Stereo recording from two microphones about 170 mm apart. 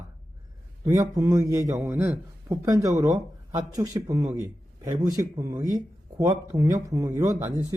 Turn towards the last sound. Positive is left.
turn(degrees=-20)  # may be behind; listen again after turning